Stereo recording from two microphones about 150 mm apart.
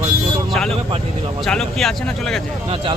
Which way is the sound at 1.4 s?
Centre (ahead or behind).